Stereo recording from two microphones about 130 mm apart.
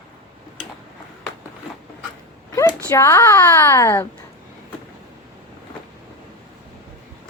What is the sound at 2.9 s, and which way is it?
A woman's voice, 20° left (ahead or behind).